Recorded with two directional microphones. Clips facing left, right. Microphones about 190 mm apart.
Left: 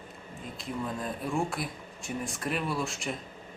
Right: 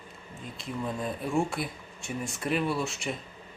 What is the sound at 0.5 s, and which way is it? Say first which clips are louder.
Speech: right 1 dB; centre (ahead or behind).